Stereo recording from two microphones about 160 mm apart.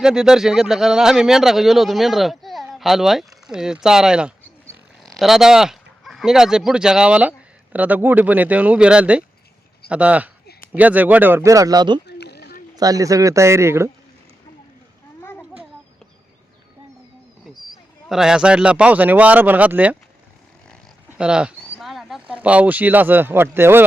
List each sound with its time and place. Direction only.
0.0 s speech: 5° right (ahead or behind); by 11.9 s 25° right (ahead or behind)
12.0 s a sound: 90° left
12.7 s speech: 25° right (ahead or behind)
15.2 s children playing: 15° left (ahead or behind)
18.1 s speech: 5° right (ahead or behind)
21.2 s speech: 5° right (ahead or behind)